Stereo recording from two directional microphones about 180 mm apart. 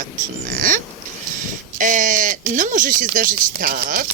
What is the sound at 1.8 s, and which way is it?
Speech, 45° right (ahead or behind).